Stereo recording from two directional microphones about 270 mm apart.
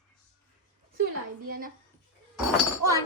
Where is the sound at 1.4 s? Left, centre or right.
Right.